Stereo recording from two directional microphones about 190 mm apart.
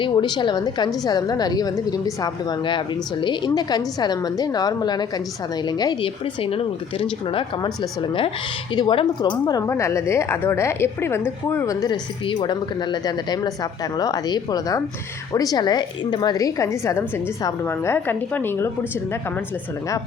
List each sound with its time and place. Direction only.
0.0 s a woman's voice: 25° left (ahead or behind)